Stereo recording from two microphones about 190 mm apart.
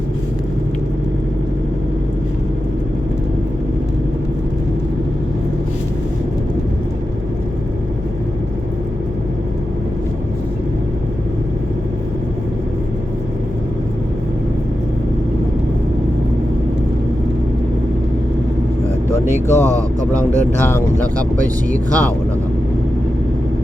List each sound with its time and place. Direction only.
19.2 s vehicle: 15° right (ahead or behind)
19.6 s a sound: 15° right (ahead or behind)
21.4 s speech: 20° right (ahead or behind)